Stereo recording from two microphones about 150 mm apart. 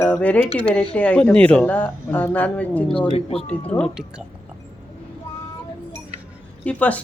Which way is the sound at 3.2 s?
40° left (ahead or behind).